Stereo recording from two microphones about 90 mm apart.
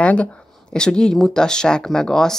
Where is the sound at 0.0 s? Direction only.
15° left (ahead or behind).